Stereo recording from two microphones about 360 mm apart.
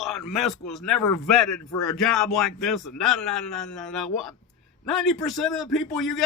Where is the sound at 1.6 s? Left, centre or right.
Left.